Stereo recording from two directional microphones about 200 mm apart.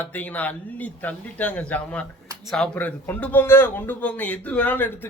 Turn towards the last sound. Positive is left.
turn(degrees=10)  # may be behind; listen again after turning